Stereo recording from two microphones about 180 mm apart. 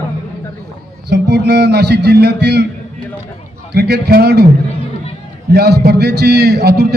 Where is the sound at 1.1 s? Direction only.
70° right (ahead or behind).